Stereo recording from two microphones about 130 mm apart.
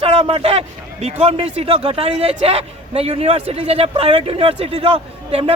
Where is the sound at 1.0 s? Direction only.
50° right (ahead or behind).